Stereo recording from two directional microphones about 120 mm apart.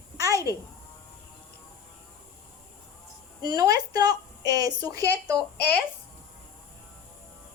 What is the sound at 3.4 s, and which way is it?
Speech, 30° right (ahead or behind).